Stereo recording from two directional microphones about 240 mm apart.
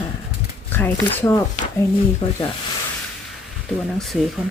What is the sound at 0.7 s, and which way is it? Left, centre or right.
Speech, centre.